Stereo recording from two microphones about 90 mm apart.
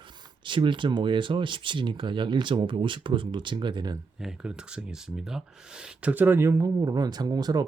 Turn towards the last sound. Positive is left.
turn(degrees=-45)  # may be behind; listen again after turning